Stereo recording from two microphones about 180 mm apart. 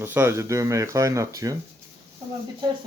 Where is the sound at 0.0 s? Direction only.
10° right (ahead or behind).